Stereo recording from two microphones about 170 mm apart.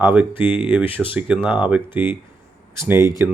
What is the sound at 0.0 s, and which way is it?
Speech, 10° right (ahead or behind).